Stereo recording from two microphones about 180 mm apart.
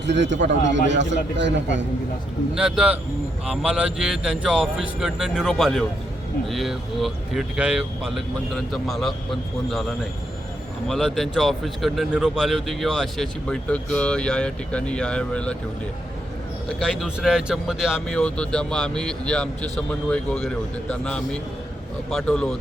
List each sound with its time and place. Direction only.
0.0 s a man's voice: 80° right
2.6 s speech: 5° right (ahead or behind)
10.8 s speech: centre (ahead or behind)
16.6 s speech: centre (ahead or behind)